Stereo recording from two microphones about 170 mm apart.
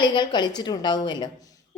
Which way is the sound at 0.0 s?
30° left (ahead or behind).